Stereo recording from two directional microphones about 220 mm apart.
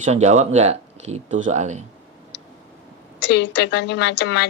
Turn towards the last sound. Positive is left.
turn(degrees=50)  # may be behind; listen again after turning